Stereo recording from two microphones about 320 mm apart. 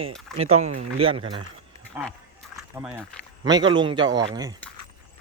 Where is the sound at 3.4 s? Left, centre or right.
Centre.